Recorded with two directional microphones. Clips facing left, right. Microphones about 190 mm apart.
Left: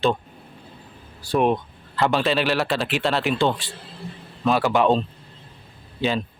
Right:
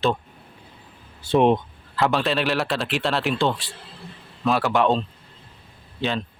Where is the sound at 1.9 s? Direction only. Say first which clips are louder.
Left 1 dB; centre (ahead or behind).